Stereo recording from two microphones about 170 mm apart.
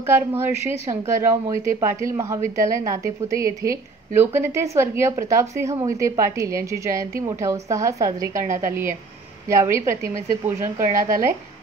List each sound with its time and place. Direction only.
0.0 s a woman's voice: 15° right (ahead or behind)